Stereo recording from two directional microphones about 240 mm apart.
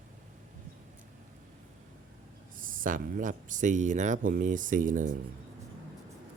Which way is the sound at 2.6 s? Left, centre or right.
Right.